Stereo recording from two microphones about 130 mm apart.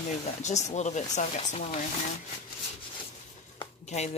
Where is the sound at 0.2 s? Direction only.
65° left (ahead or behind).